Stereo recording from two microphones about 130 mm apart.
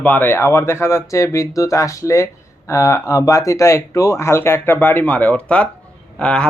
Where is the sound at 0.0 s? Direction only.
15° left (ahead or behind).